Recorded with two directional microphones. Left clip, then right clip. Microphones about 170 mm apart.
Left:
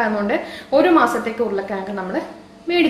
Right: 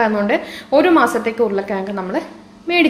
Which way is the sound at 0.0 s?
40° right (ahead or behind).